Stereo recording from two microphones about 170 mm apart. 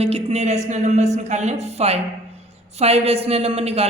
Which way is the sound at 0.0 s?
35° right (ahead or behind).